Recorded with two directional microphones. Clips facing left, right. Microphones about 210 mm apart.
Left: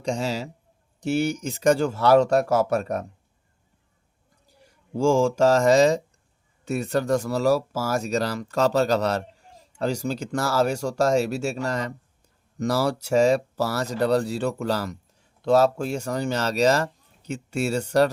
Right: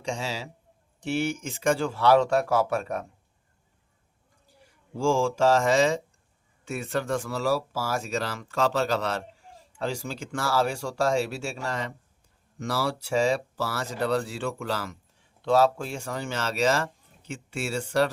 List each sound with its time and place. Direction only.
0.0 s speech: 40° left (ahead or behind)
4.9 s speech: 45° left (ahead or behind)